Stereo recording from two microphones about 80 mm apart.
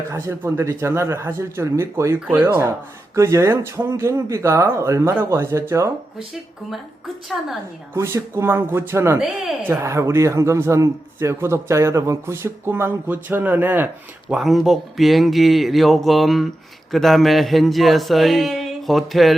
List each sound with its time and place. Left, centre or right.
0.1 s a man's voice: right
2.1 s speech: centre
2.4 s a man's voice: right
7.3 s speech: centre
7.9 s a man's voice: right
9.1 s speech: centre
9.6 s a man's voice: right
14.3 s speech: centre